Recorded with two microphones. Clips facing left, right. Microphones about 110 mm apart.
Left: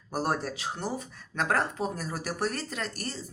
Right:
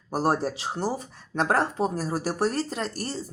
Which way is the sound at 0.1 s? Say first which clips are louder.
Right 5 dB; 30° right (ahead or behind).